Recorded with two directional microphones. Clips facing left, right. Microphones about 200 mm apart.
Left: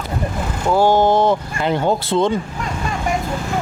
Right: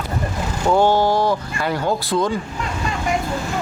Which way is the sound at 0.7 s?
10° left (ahead or behind).